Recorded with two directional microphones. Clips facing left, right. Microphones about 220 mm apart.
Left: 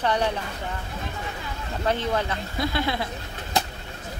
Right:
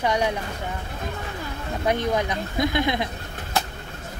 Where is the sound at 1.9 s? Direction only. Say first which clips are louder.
Right 2 dB; 15° right (ahead or behind).